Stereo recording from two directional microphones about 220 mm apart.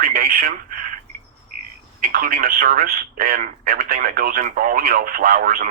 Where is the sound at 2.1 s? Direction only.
40° right (ahead or behind).